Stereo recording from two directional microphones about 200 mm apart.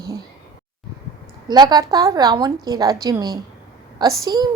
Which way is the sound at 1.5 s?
20° right (ahead or behind).